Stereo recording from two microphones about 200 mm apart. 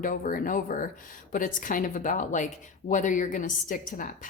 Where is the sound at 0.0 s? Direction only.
45° left (ahead or behind).